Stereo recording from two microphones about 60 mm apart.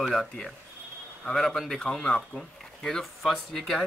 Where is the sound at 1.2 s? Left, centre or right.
Centre.